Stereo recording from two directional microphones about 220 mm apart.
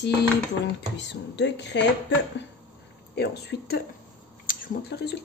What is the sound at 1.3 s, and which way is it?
Speech, 50° left (ahead or behind).